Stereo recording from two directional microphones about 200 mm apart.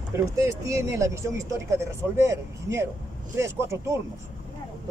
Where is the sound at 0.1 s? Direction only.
15° right (ahead or behind).